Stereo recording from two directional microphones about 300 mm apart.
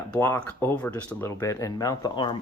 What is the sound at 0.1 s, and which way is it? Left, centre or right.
Speech, centre.